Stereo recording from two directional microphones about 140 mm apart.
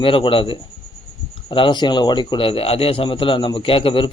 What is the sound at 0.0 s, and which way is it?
Speech, 40° left (ahead or behind).